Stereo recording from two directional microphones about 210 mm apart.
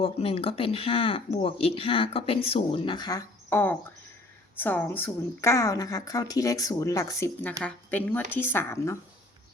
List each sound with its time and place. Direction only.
0.0 s speech: 30° left (ahead or behind); by 9.0 s 15° left (ahead or behind)